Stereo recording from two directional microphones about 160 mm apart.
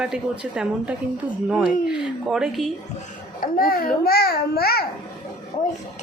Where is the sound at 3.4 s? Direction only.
60° left (ahead or behind).